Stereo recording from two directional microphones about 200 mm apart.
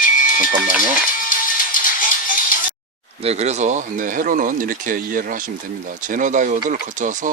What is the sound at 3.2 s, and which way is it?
Speech, 30° right (ahead or behind).